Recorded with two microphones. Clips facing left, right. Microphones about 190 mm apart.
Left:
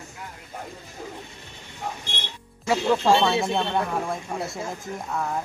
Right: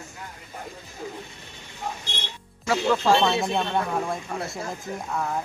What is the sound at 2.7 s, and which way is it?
Speech, 20° left (ahead or behind).